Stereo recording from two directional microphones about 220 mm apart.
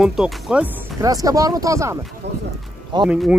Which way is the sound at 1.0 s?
15° right (ahead or behind).